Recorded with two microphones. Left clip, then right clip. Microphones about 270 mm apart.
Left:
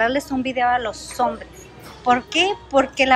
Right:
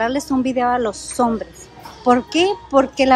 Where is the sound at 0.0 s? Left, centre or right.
Centre.